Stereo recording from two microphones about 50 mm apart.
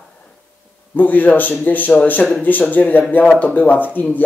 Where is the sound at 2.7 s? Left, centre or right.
Left.